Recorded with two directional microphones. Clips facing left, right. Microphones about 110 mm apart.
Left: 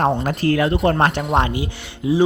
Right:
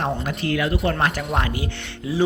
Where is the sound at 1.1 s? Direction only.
25° left (ahead or behind).